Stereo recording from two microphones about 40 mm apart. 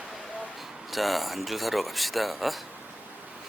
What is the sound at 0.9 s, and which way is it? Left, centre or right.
Speech, centre.